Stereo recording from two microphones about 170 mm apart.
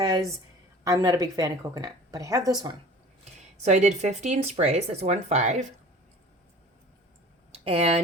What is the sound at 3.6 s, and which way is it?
Speech, 45° right (ahead or behind).